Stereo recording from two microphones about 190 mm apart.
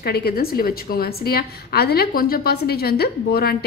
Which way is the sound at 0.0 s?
55° left (ahead or behind).